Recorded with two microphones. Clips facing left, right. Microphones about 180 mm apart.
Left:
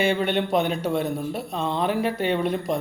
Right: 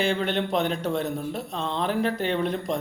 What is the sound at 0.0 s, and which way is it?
A man's voice, 10° left (ahead or behind).